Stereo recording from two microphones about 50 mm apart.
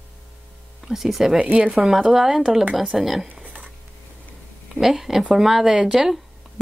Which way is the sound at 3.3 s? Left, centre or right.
Right.